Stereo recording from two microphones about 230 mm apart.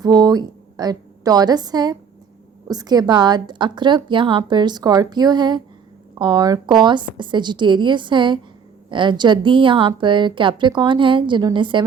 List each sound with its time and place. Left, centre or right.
0.0 s a woman's voice: centre